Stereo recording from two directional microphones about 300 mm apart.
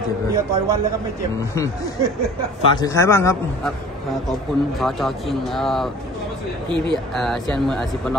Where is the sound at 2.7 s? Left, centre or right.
Centre.